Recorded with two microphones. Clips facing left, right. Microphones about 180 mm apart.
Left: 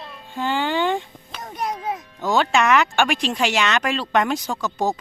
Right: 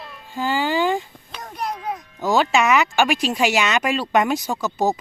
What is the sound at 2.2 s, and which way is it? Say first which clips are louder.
Speech: right 1 dB; 5° right (ahead or behind).